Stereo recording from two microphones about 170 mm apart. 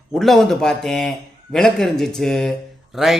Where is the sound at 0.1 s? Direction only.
Centre (ahead or behind).